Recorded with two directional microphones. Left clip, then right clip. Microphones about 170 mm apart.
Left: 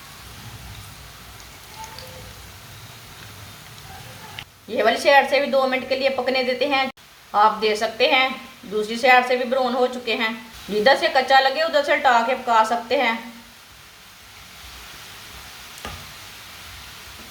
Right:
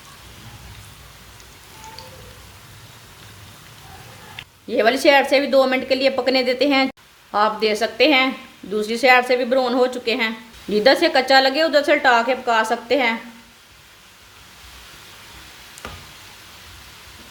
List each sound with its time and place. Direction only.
4.7 s a woman's voice: 60° right (ahead or behind)